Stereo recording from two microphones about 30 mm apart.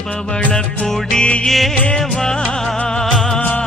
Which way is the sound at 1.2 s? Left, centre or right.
Left.